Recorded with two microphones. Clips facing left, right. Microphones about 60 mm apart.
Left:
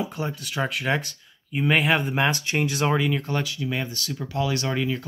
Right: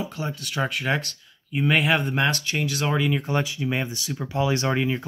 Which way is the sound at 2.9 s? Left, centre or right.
Centre.